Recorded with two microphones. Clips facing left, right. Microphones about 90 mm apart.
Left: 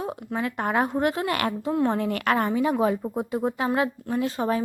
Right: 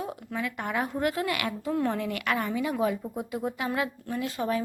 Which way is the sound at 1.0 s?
30° left (ahead or behind).